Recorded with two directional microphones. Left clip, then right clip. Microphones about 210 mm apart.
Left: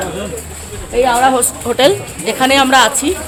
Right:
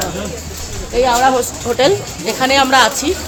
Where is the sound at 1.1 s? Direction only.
30° left (ahead or behind).